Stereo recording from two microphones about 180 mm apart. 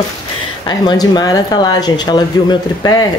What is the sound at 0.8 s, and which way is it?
Speech, 20° left (ahead or behind).